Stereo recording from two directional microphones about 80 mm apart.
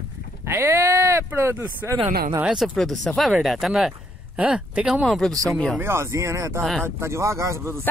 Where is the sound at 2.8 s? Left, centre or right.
Centre.